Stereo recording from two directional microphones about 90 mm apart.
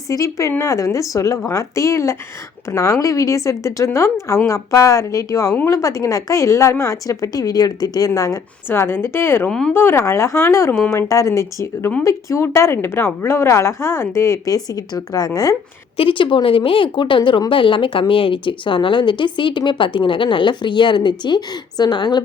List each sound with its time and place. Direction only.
0.1 s a woman's voice: 35° left (ahead or behind)
8.7 s a woman's voice: 25° left (ahead or behind)
9.5 s speech: 10° left (ahead or behind)
9.7 s a woman's voice: 30° left (ahead or behind)
16.0 s speech: 75° left (ahead or behind); by 22.2 s 55° left (ahead or behind)